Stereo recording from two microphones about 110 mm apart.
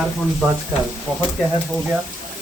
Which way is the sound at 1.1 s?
10° right (ahead or behind).